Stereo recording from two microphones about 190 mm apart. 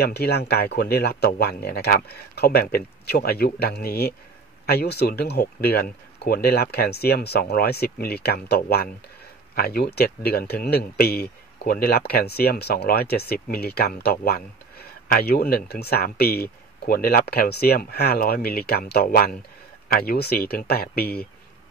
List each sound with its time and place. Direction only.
0.0 s speech: 55° left (ahead or behind)